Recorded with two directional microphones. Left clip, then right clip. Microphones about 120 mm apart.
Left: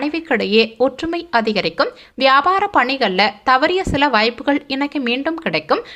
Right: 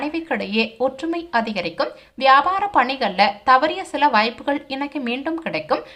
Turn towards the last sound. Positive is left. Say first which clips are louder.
# left 4 dB
turn(degrees=30)  # may be behind; listen again after turning